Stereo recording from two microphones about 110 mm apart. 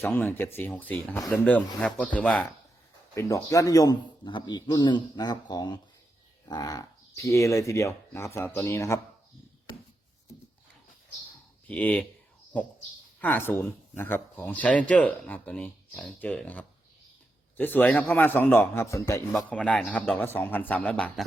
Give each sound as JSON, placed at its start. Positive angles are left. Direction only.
{"t": 0.0, "sound": "speech", "side_deg": 20}
{"t": 3.2, "sound": "a man's voice", "side_deg": 30}
{"t": 11.7, "sound": "speech", "side_deg": 15}
{"t": 13.1, "sound": "speech", "side_deg": 20}
{"t": 19.5, "sound": "speech", "side_deg": 10}